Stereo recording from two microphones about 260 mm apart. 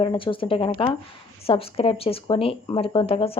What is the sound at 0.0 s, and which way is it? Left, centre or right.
A woman's voice, centre.